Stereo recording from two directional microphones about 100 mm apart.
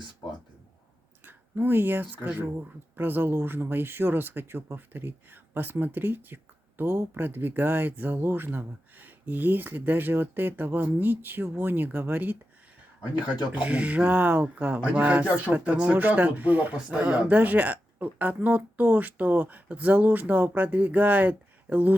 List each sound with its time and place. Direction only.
1.2 s speech: 20° right (ahead or behind)
13.1 s speech: 50° left (ahead or behind)
13.6 s speech: 15° right (ahead or behind)